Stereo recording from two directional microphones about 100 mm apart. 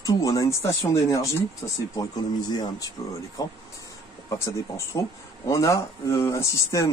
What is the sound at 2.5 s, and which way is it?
A man's voice, 40° left (ahead or behind).